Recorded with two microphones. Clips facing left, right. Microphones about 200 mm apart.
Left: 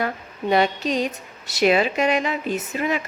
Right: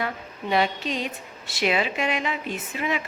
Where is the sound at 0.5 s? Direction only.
40° left (ahead or behind).